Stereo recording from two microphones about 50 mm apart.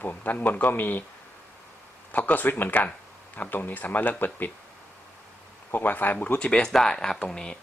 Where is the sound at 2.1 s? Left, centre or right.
Left.